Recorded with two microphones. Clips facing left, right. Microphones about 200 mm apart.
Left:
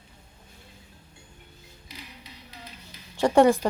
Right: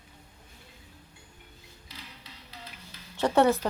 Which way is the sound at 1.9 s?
15° left (ahead or behind).